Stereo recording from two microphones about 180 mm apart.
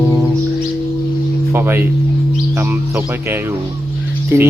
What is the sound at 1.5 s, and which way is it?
Music, 10° right (ahead or behind).